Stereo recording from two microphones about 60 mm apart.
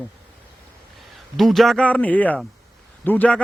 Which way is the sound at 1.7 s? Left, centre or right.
Left.